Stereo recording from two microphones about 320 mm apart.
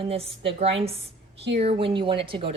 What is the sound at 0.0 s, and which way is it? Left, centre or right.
A woman's voice, centre.